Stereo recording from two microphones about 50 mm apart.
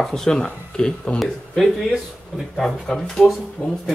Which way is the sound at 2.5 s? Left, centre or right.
Centre.